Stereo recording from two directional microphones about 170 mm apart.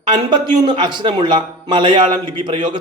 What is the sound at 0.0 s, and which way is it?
A man's voice, 25° right (ahead or behind).